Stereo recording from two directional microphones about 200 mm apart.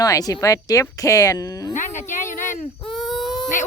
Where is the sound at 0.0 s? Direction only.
20° left (ahead or behind).